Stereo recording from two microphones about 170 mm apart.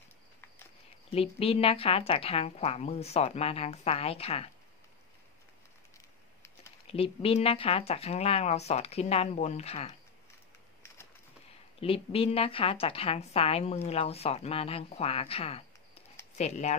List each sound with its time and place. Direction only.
1.1 s speech: 35° left (ahead or behind)
5.9 s a sound: 20° left (ahead or behind)
6.9 s speech: 35° left (ahead or behind)
11.8 s speech: 35° left (ahead or behind)